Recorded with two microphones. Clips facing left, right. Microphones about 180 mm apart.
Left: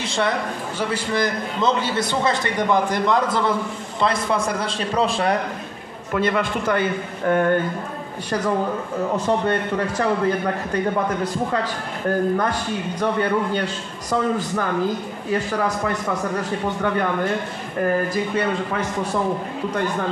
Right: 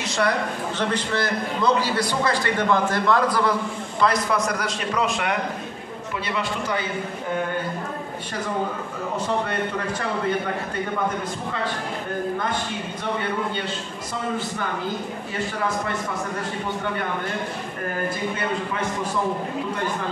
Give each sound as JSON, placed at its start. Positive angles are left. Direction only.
{"t": 0.0, "sound": "a sound", "side_deg": 30}
{"t": 0.7, "sound": "a man's voice", "side_deg": 10}
{"t": 6.1, "sound": "a man's voice", "side_deg": 50}